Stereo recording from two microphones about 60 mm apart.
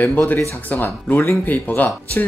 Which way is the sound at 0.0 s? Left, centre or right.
Left.